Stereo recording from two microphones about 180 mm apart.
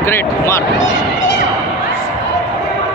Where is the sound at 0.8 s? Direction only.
90° left.